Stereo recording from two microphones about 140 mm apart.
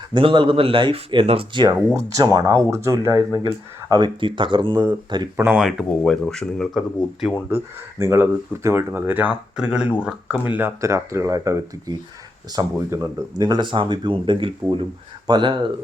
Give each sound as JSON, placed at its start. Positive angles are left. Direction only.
{"t": 0.1, "sound": "speech", "side_deg": -35}
{"t": 2.1, "sound": "speech", "side_deg": -25}
{"t": 5.4, "sound": "speech", "side_deg": -10}
{"t": 7.5, "sound": "speech", "side_deg": -20}
{"t": 13.4, "sound": "speech", "side_deg": -30}